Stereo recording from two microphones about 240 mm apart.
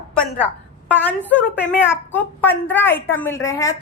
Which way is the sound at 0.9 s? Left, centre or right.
Centre.